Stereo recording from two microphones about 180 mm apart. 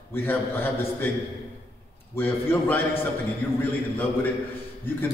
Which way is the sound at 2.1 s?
10° left (ahead or behind).